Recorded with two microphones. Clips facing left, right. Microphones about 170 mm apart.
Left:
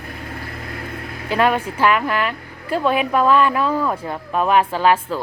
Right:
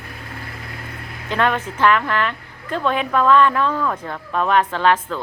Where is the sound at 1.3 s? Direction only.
10° left (ahead or behind).